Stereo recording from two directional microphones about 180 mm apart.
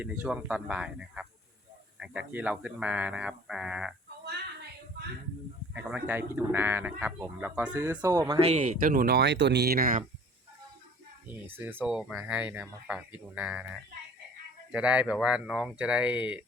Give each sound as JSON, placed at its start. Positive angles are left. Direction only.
{"t": 0.0, "sound": "speech", "side_deg": -5}
{"t": 5.7, "sound": "speech", "side_deg": -10}
{"t": 8.4, "sound": "speech", "side_deg": -40}
{"t": 11.4, "sound": "speech", "side_deg": -10}